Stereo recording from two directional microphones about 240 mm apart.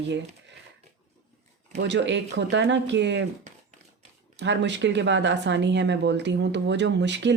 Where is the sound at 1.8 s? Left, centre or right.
Right.